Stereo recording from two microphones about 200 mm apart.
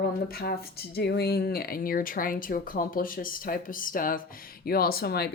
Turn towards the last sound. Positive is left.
turn(degrees=50)  # may be behind; listen again after turning